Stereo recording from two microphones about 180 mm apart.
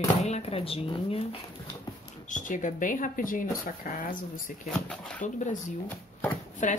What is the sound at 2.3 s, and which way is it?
Speech, 45° left (ahead or behind).